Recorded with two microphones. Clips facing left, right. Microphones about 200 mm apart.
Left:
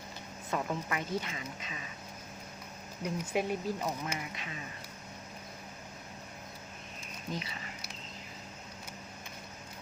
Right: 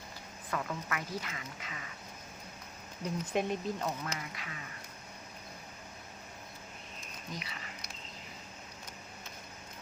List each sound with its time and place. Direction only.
0.5 s speech: 25° left (ahead or behind)
3.0 s speech: 10° left (ahead or behind)